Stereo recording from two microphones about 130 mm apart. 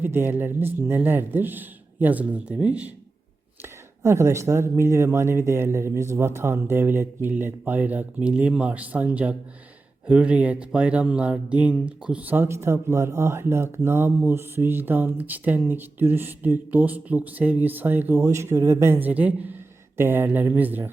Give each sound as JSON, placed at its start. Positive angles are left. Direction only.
{"t": 0.0, "sound": "speech", "side_deg": -15}
{"t": 3.6, "sound": "speech", "side_deg": -20}